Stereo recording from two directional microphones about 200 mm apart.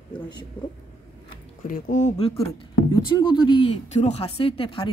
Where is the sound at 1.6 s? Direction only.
40° left (ahead or behind).